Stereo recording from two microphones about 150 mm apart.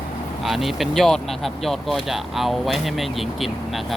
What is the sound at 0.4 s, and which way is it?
Speech, centre (ahead or behind).